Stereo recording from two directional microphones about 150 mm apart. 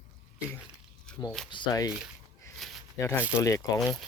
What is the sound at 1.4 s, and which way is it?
Speech, 30° left (ahead or behind).